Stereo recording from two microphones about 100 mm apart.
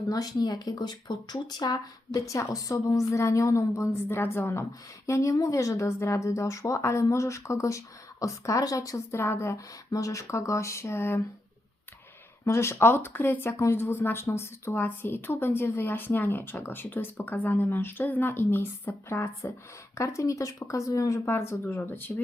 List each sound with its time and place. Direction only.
0.1 s a woman's voice: 40° left (ahead or behind); by 11.2 s 25° left (ahead or behind)
12.5 s speech: 25° left (ahead or behind)